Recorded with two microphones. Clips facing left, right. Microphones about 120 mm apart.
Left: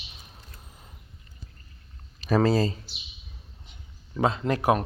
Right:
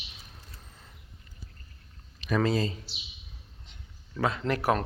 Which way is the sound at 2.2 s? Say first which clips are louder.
Left 5 dB; 35° left (ahead or behind).